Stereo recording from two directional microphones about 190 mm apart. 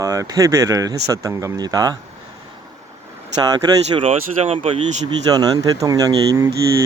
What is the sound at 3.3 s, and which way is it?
Speech, 20° right (ahead or behind).